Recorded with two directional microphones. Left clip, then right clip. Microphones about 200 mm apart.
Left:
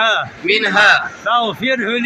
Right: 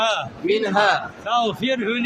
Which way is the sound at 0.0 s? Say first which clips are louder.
Left 6 dB; 20° left (ahead or behind).